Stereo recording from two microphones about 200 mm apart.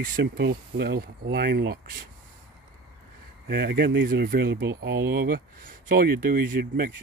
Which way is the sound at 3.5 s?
55° right (ahead or behind).